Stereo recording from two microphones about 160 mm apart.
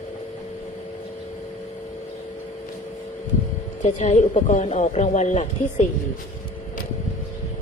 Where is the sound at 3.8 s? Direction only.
45° left (ahead or behind).